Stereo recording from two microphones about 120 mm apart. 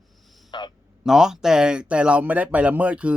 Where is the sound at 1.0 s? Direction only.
5° right (ahead or behind).